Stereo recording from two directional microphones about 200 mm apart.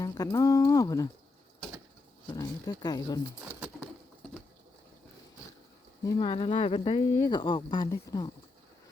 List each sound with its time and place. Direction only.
0.0 s speech: 15° left (ahead or behind)
2.3 s speech: 20° left (ahead or behind)
3.8 s bird: 5° left (ahead or behind)
6.1 s speech: 25° left (ahead or behind)